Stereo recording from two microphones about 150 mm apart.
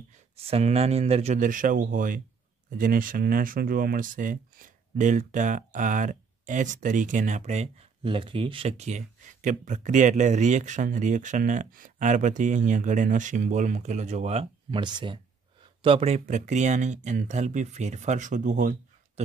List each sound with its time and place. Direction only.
0.5 s speech: 45° right (ahead or behind)
1.4 s speech: 60° right (ahead or behind)